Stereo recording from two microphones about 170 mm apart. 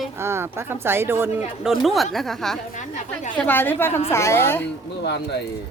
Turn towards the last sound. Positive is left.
turn(degrees=80)